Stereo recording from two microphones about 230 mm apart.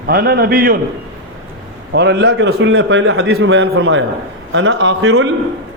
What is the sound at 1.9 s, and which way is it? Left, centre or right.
A man's voice, right.